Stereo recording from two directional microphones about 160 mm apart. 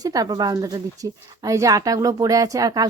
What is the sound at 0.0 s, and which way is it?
Speech, 25° right (ahead or behind).